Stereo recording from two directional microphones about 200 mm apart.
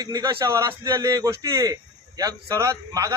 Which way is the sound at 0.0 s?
20° right (ahead or behind).